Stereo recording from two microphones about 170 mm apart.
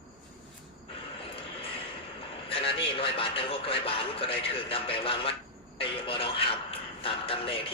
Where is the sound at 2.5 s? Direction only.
35° left (ahead or behind).